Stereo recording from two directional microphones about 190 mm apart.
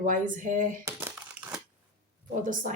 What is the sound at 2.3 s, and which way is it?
Speech, 45° right (ahead or behind).